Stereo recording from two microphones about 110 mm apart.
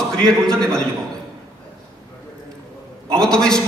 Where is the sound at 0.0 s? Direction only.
5° left (ahead or behind).